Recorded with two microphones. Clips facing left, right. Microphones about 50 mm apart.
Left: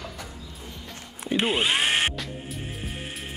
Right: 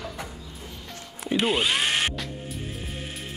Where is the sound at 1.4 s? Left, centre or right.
Left.